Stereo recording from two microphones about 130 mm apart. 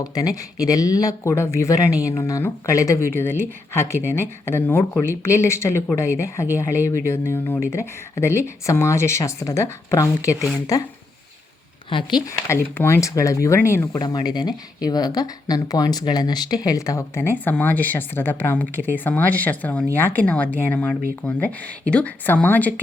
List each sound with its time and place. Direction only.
0.0 s speech: 30° left (ahead or behind)
11.9 s speech: 40° left (ahead or behind)
12.5 s speech: 20° left (ahead or behind)
14.0 s speech: 30° left (ahead or behind); by 22.7 s 10° left (ahead or behind)